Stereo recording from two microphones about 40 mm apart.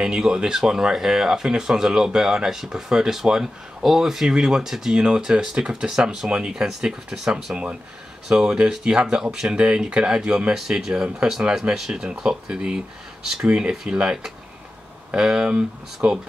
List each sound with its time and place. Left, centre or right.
0.0 s speech: centre
5.0 s speech: right